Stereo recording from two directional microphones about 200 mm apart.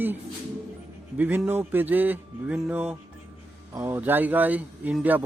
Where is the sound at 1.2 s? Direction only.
10° right (ahead or behind).